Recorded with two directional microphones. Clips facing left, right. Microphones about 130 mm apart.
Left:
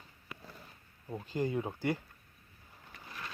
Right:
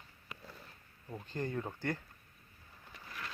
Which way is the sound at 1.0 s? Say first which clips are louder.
Left 5 dB; 10° left (ahead or behind).